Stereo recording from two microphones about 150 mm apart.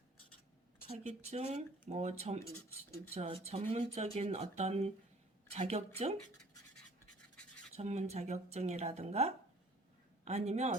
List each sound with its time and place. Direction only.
0.9 s a woman's voice: 45° right (ahead or behind)
7.8 s a woman's voice: 50° right (ahead or behind)